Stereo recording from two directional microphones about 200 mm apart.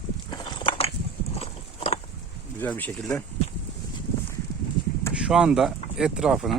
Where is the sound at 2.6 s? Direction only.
10° left (ahead or behind).